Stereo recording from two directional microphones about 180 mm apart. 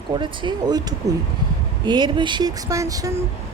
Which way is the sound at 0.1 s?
25° right (ahead or behind).